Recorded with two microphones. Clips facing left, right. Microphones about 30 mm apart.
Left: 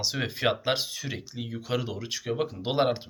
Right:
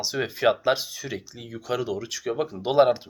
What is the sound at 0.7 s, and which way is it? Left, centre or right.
Speech, left.